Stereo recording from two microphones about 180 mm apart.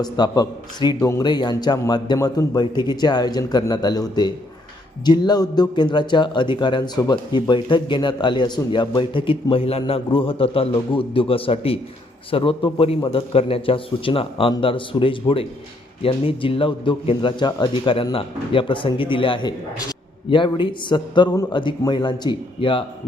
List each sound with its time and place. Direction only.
0.0 s a man's voice: 25° left (ahead or behind)